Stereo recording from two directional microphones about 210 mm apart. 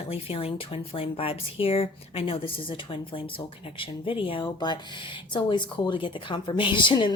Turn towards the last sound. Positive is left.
turn(degrees=20)  # may be behind; listen again after turning